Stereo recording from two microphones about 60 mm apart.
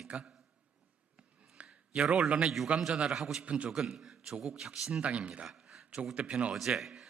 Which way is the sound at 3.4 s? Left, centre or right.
Centre.